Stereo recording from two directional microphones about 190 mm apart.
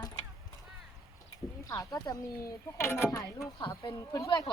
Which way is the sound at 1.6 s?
20° left (ahead or behind).